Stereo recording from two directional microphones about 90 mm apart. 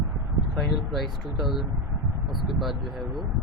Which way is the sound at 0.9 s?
Centre (ahead or behind).